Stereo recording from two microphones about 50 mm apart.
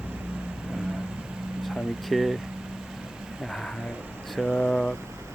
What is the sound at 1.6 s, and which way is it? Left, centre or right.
Speech, centre.